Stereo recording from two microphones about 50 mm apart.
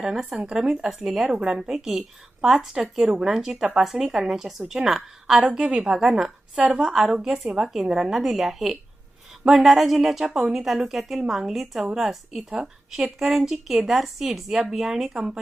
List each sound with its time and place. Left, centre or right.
0.0 s a woman's voice: centre